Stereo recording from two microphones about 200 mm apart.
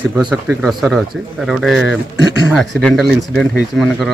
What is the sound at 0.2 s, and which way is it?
Speech, 5° right (ahead or behind).